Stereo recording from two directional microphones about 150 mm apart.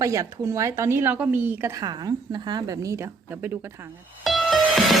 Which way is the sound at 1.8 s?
25° right (ahead or behind).